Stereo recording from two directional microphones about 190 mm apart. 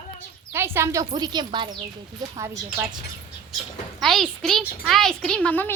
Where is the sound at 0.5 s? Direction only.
15° right (ahead or behind).